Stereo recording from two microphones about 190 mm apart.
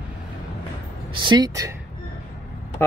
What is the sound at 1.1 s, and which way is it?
Speech, 20° right (ahead or behind).